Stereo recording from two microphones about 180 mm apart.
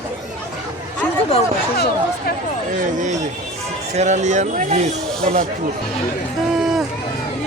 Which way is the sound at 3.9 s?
40° right (ahead or behind).